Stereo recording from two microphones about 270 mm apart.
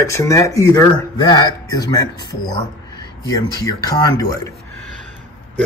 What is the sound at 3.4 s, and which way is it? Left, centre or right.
Speech, centre.